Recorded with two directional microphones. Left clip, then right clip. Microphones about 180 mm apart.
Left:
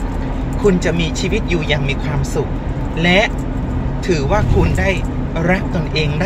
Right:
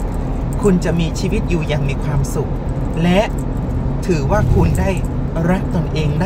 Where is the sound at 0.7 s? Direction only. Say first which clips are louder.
Left 2 dB; 15° right (ahead or behind).